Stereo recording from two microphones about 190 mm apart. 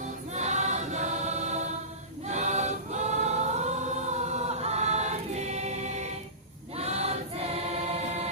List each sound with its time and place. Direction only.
0.3 s choir: 40° right (ahead or behind)